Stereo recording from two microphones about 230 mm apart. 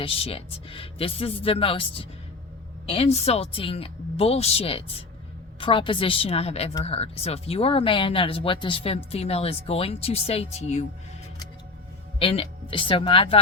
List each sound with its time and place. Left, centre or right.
0.0 s speech: left
12.2 s speech: left